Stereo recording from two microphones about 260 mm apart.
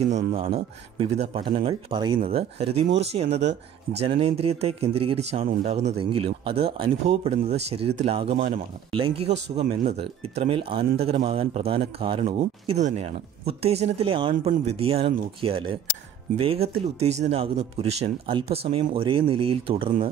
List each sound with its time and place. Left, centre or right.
0.1 s speech: right